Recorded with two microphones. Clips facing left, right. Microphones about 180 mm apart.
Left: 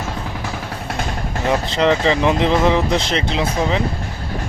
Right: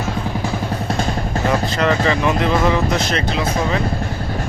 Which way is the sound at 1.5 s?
20° left (ahead or behind).